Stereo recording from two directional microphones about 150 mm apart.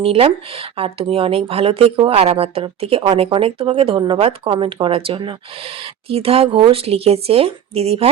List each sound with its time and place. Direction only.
0.0 s speech: 40° right (ahead or behind)